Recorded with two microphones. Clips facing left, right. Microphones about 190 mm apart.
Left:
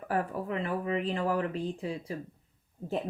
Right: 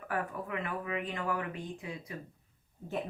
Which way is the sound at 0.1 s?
30° left (ahead or behind).